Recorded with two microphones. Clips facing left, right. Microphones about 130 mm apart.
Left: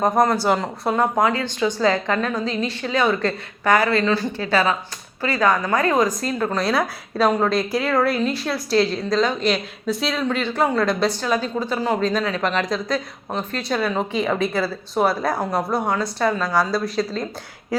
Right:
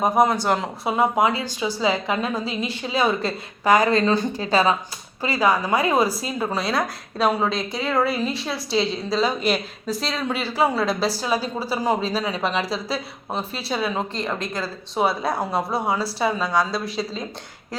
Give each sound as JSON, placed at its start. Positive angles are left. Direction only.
{"t": 0.0, "sound": "a woman's voice", "side_deg": -5}